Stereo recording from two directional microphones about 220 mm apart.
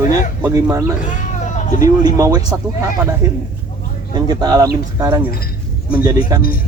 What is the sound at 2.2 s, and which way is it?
Speech, 15° right (ahead or behind).